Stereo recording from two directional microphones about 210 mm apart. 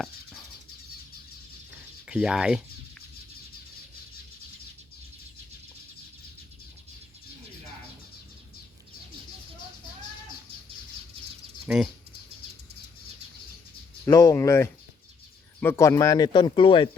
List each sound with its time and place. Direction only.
0.0 s bird: centre (ahead or behind)
2.0 s speech: 5° right (ahead or behind)
11.6 s speech: centre (ahead or behind)
14.0 s speech: 15° left (ahead or behind)